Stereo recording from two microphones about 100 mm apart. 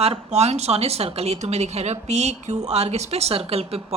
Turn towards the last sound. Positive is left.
turn(degrees=-85)